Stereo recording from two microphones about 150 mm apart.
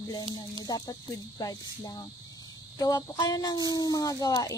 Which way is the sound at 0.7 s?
25° left (ahead or behind).